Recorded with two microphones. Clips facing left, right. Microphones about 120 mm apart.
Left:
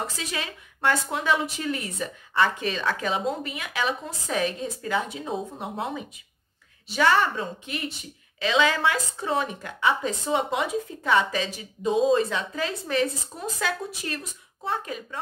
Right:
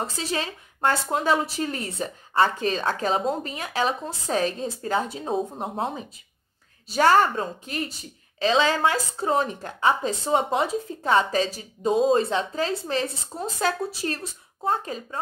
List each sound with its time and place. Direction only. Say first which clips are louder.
0.0 s a woman's voice: right 4 dB; 35° right (ahead or behind)